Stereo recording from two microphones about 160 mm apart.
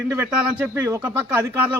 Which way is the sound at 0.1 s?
15° right (ahead or behind).